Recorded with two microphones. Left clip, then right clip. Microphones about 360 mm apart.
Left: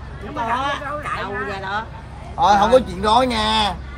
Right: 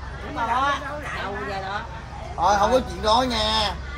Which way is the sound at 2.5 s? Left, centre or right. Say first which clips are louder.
Left 5 dB; left.